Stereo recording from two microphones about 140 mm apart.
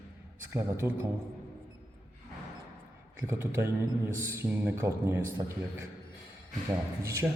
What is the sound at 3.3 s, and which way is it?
Speech, 20° right (ahead or behind).